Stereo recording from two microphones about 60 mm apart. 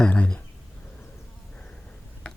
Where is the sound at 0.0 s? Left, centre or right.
Centre.